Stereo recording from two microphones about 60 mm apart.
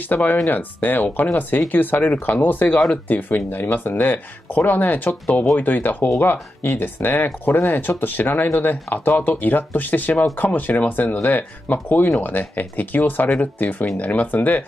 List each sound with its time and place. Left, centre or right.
0.1 s speech: left